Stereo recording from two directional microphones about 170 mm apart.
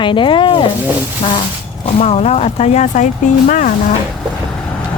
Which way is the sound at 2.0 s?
40° left (ahead or behind).